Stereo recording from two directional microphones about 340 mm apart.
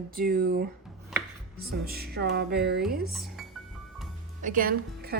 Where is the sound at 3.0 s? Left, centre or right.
Centre.